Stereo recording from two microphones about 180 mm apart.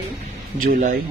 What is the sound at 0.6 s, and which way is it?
Speech, 50° right (ahead or behind).